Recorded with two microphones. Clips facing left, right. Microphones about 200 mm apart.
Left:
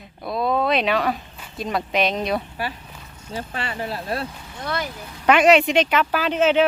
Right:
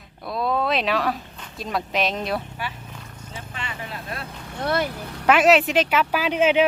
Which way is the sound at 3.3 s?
35° left (ahead or behind).